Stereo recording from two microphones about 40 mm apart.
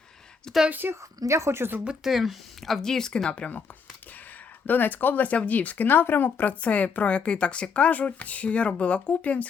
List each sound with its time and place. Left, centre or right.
0.5 s speech: centre
0.8 s a woman's voice: right
1.5 s speech: right
2.0 s speech: centre
2.8 s speech: centre
3.2 s speech: left
4.6 s speech: left
5.3 s speech: left